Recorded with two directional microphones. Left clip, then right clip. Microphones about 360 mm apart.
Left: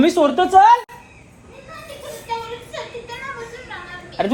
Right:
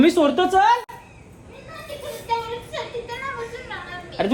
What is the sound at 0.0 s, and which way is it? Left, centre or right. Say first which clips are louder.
Speech: left 2 dB; centre.